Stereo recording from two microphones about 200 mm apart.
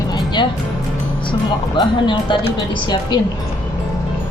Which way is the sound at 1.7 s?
25° left (ahead or behind).